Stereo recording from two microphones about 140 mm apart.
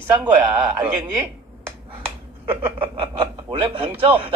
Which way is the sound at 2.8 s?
40° right (ahead or behind).